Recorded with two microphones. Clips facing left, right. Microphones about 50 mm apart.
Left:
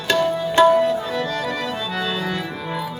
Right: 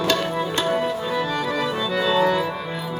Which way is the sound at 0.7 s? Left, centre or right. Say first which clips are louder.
Left 4 dB; centre.